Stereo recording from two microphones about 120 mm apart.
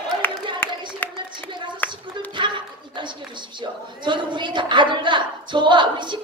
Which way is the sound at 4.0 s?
40° right (ahead or behind).